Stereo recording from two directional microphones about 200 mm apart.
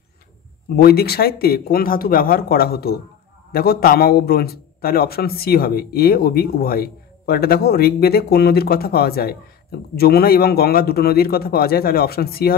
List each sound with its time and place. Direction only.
0.7 s a man's voice: 50° left (ahead or behind)